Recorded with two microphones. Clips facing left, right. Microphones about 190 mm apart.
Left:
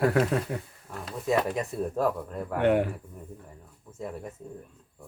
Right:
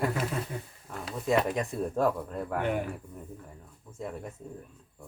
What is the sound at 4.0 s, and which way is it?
Speech, 5° left (ahead or behind).